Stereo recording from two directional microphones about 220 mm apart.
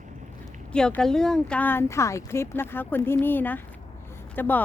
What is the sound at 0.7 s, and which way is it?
Speech, 5° left (ahead or behind).